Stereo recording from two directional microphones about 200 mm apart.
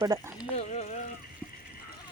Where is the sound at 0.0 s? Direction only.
15° right (ahead or behind).